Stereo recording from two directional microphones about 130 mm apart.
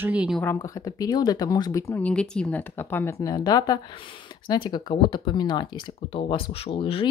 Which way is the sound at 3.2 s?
30° left (ahead or behind).